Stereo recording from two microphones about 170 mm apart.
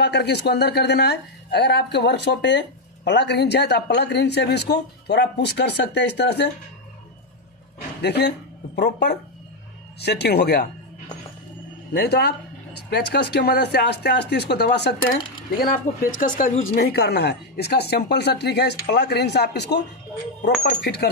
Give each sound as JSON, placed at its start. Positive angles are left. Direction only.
{"t": 0.0, "sound": "speech", "side_deg": 80}
{"t": 8.0, "sound": "speech", "side_deg": 80}
{"t": 11.9, "sound": "speech", "side_deg": 70}
{"t": 15.5, "sound": "speech", "side_deg": 60}
{"t": 20.4, "sound": "speech", "side_deg": 70}